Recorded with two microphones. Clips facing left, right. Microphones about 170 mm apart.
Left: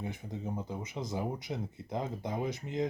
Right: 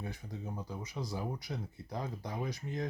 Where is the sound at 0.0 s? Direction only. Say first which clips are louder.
Left 4 dB; 20° left (ahead or behind).